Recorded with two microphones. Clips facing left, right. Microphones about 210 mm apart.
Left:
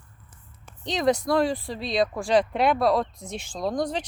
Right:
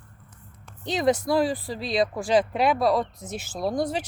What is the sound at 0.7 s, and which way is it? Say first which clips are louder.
Speech: even; 5° right (ahead or behind).